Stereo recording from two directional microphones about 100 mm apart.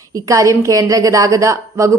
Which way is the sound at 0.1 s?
35° right (ahead or behind).